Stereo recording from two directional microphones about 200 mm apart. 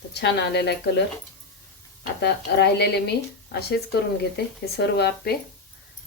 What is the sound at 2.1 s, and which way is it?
Speech, 55° left (ahead or behind).